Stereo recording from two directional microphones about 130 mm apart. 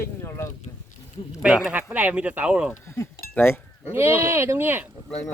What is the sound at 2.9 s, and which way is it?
Speech, 20° left (ahead or behind).